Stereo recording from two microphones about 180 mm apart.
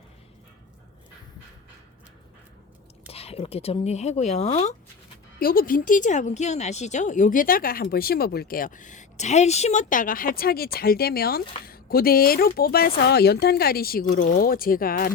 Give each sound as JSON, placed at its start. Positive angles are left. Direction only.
{"t": 3.1, "sound": "speech", "side_deg": 35}
{"t": 5.4, "sound": "speech", "side_deg": 55}